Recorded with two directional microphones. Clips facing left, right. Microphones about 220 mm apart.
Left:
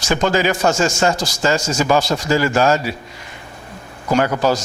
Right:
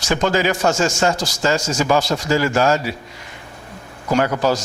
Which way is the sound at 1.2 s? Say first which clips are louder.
Left 1 dB; 10° left (ahead or behind).